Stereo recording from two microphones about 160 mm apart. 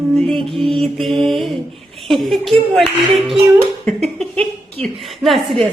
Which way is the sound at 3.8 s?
5° left (ahead or behind).